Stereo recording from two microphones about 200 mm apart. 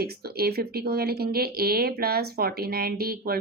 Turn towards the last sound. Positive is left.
turn(degrees=-50)  # may be behind; listen again after turning